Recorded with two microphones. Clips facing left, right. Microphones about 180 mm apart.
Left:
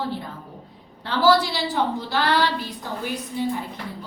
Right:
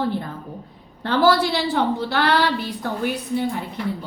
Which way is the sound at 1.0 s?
55° right (ahead or behind).